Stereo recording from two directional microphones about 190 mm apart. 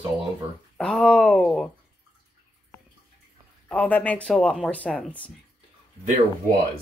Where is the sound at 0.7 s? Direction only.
5° left (ahead or behind).